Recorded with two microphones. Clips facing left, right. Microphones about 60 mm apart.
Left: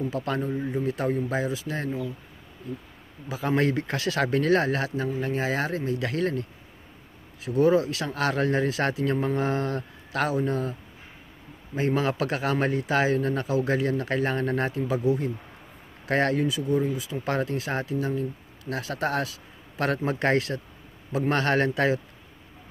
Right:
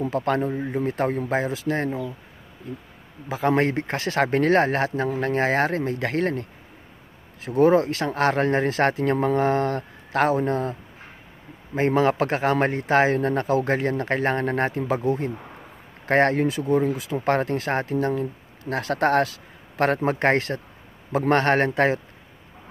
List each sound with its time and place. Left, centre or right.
0.0 s speech: right
3.3 s speech: right
5.1 s speech: right
7.4 s speech: right